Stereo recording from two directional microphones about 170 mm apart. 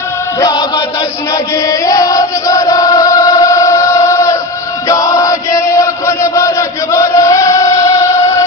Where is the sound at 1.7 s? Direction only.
20° left (ahead or behind).